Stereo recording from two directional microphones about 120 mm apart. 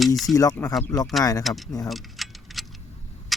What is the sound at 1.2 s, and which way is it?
Speech, 30° left (ahead or behind).